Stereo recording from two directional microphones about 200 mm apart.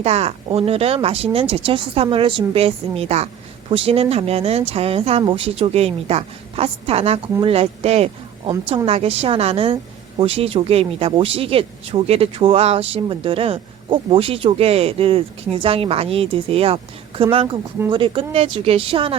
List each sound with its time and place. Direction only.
0.0 s speech: 30° right (ahead or behind)